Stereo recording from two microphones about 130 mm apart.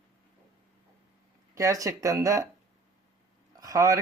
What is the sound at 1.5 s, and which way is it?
Speech, 25° right (ahead or behind).